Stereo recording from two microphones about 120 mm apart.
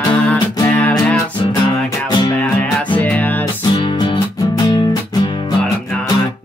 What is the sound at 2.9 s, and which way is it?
Music, 15° left (ahead or behind).